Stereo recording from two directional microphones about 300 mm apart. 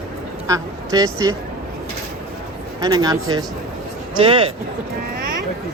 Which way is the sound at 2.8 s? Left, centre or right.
Centre.